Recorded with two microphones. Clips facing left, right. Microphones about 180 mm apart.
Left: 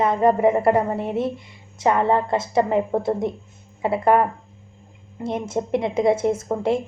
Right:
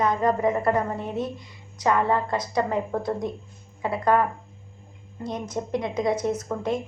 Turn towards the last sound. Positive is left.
turn(degrees=30)  # may be behind; listen again after turning